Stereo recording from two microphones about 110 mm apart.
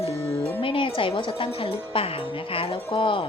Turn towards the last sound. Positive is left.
turn(degrees=55)  # may be behind; listen again after turning